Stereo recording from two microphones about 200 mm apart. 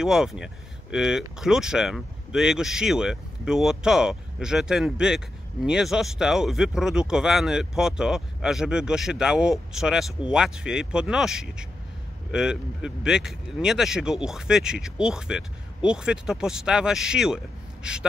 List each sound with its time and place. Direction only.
0.0 s speech: 5° right (ahead or behind)